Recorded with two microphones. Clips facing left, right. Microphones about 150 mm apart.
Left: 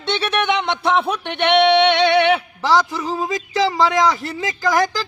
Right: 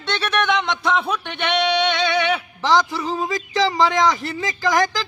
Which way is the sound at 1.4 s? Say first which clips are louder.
Left 6 dB; 65° left (ahead or behind).